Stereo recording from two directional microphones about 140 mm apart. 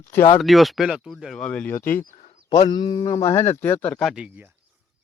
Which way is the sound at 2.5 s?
30° left (ahead or behind).